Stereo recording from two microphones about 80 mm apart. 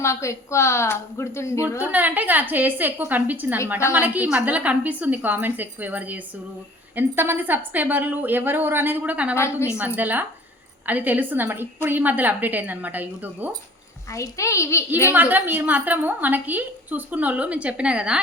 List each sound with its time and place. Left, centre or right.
0.0 s a woman's voice: left
1.8 s a woman's voice: right
9.3 s a woman's voice: left
9.7 s a woman's voice: right
14.1 s a woman's voice: left
15.1 s a woman's voice: right